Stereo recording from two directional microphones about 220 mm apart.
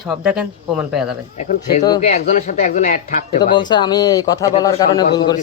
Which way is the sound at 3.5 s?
20° left (ahead or behind).